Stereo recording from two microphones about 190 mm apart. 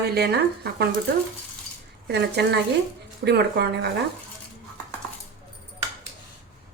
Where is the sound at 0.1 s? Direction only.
60° right (ahead or behind).